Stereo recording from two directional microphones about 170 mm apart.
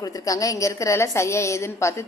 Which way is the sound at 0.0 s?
20° left (ahead or behind).